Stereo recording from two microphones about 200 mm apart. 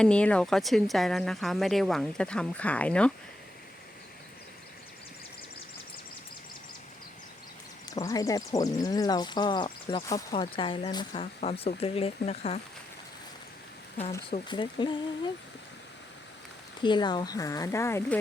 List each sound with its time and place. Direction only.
0.0 s speech: 5° left (ahead or behind)
7.9 s speech: 15° left (ahead or behind)
14.3 s speech: 25° left (ahead or behind)
16.8 s speech: 20° left (ahead or behind)